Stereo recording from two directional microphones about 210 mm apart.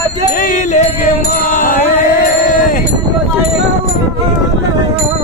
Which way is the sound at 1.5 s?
40° left (ahead or behind).